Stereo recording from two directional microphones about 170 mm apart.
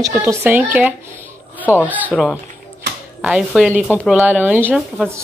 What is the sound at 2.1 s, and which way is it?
Speech, centre (ahead or behind).